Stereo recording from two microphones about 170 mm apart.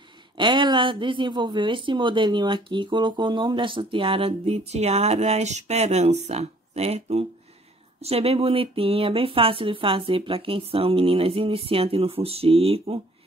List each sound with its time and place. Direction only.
0.4 s speech: 30° right (ahead or behind)